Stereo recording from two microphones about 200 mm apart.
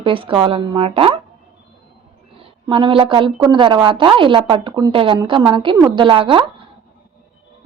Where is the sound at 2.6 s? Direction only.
25° right (ahead or behind).